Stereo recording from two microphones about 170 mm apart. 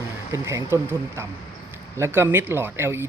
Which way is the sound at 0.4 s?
15° right (ahead or behind).